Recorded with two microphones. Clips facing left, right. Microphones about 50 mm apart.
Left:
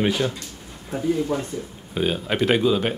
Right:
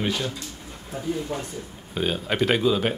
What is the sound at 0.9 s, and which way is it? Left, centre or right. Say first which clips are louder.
Speech: left 6 dB; left.